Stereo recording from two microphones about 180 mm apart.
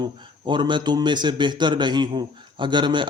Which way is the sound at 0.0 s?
25° right (ahead or behind).